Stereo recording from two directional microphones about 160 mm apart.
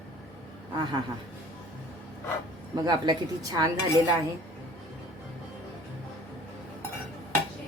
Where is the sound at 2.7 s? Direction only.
25° right (ahead or behind).